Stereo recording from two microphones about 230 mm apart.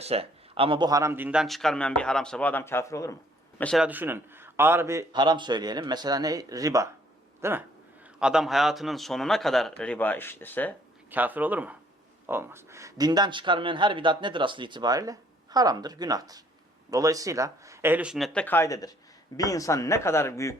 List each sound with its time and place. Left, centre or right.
0.0 s a man's voice: right; by 3.2 s centre
3.6 s a man's voice: centre
11.1 s speech: centre